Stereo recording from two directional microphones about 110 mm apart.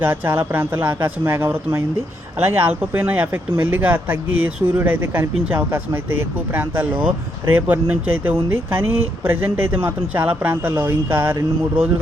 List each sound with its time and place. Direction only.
0.0 s speech: 20° right (ahead or behind)